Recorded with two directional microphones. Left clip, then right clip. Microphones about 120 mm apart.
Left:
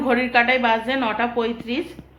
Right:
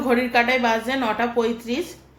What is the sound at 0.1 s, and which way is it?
A woman's voice, 30° right (ahead or behind).